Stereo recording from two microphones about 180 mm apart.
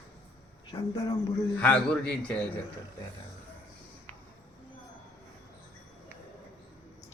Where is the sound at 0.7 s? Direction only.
20° left (ahead or behind).